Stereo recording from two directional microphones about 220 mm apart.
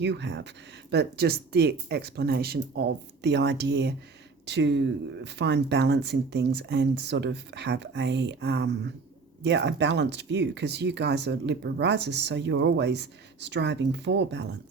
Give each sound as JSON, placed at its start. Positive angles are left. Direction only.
{"t": 0.0, "sound": "speech", "side_deg": -50}